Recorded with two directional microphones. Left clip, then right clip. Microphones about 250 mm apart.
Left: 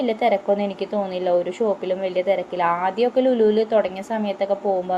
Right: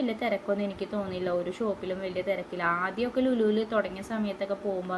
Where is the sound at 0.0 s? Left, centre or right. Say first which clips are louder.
Left 10 dB; centre.